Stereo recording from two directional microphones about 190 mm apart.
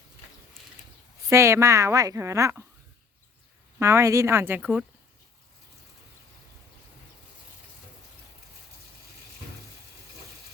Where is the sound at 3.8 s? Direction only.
15° right (ahead or behind).